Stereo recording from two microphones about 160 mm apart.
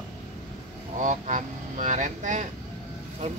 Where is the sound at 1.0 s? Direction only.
50° right (ahead or behind).